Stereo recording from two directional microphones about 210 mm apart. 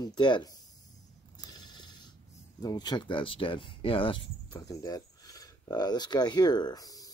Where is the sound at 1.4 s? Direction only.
20° left (ahead or behind).